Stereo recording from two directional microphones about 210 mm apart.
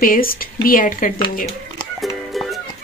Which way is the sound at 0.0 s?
45° left (ahead or behind).